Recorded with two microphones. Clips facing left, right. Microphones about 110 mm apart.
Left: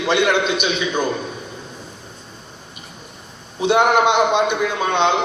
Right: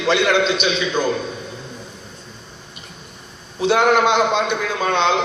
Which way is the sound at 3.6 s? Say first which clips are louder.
Even; 20° left (ahead or behind).